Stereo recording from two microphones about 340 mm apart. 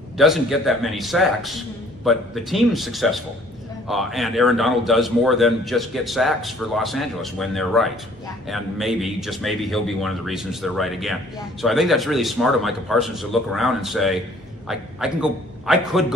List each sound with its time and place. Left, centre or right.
0.2 s a man's voice: centre